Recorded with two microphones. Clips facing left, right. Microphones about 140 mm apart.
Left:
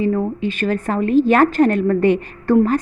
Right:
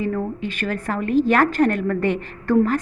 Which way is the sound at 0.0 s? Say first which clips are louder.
Left 5 dB; 20° left (ahead or behind).